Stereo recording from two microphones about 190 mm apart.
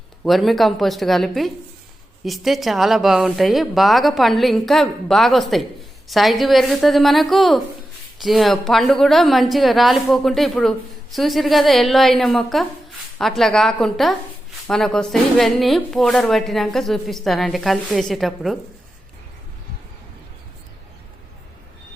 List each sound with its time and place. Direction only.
0.3 s a woman's voice: centre (ahead or behind)